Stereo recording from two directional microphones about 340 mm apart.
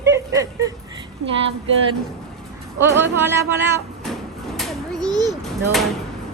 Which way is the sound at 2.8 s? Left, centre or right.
Centre.